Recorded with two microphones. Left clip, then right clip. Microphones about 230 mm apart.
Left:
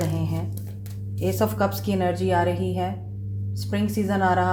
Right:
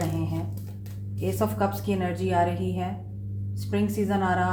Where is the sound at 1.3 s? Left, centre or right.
Left.